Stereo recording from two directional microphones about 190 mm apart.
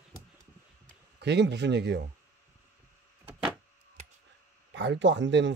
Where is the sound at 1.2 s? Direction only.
65° right (ahead or behind).